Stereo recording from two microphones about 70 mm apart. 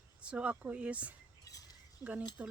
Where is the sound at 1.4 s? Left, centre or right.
Left.